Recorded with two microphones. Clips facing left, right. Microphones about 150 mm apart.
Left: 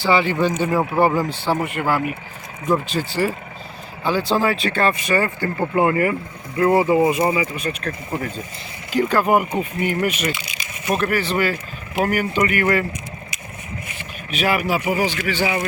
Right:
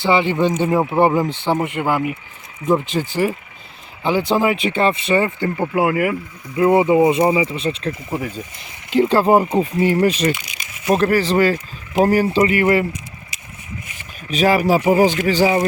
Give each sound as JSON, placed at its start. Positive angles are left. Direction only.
{"t": 0.0, "sound": "speech", "side_deg": -20}
{"t": 5.7, "sound": "speech", "side_deg": -10}
{"t": 6.6, "sound": "speech", "side_deg": -20}
{"t": 14.3, "sound": "speech", "side_deg": -40}